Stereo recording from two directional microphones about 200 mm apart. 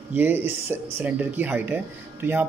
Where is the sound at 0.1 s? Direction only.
10° right (ahead or behind).